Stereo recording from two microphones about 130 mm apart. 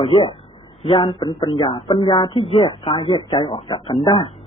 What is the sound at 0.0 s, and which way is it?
A man's voice, 45° left (ahead or behind).